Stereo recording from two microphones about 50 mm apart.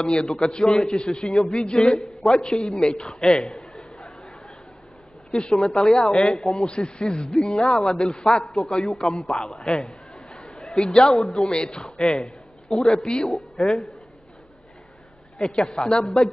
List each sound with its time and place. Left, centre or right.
0.0 s a man's voice: centre
1.7 s a man's voice: centre
5.3 s a man's voice: left
9.2 s speech: centre
9.8 s a sound: centre
10.8 s a man's voice: centre
11.1 s speech: centre
11.4 s a man's voice: centre
12.2 s a sound: centre
12.8 s a man's voice: centre
13.3 s a woman's voice: centre
15.3 s speech: centre